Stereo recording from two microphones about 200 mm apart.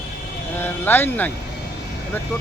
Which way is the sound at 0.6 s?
10° left (ahead or behind).